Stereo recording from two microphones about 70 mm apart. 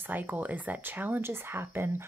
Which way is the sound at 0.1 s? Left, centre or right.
Right.